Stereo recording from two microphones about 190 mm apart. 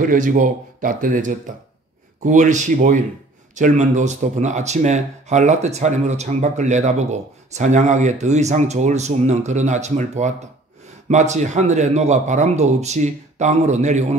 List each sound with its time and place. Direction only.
0.0 s speech: 45° right (ahead or behind)